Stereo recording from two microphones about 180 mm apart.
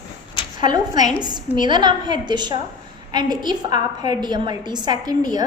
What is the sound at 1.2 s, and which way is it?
A woman's voice, 25° right (ahead or behind).